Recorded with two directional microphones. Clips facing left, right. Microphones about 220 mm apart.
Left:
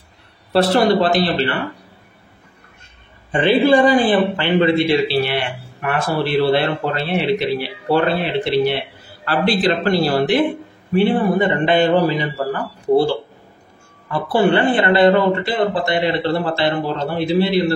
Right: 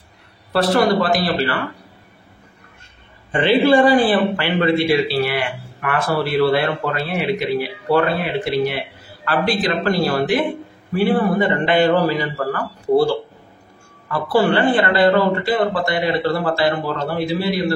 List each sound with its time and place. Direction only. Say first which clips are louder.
0.5 s a man's voice: left 2 dB; 25° left (ahead or behind)
3.3 s a man's voice: left 1 dB; 20° left (ahead or behind)
14.1 s a man's voice: left 1 dB; 20° left (ahead or behind)